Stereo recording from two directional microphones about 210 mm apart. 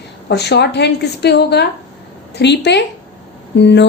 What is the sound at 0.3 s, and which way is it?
A woman's voice, 55° left (ahead or behind).